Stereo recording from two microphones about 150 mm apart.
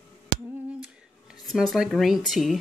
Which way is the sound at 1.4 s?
Centre (ahead or behind).